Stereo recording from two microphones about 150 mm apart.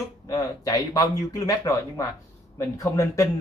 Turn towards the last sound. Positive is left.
turn(degrees=20)  # may be behind; listen again after turning